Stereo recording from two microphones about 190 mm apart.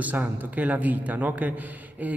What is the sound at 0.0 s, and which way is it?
A man's voice, 10° right (ahead or behind).